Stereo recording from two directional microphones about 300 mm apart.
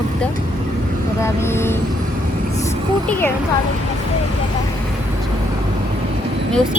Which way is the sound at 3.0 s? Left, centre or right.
Centre.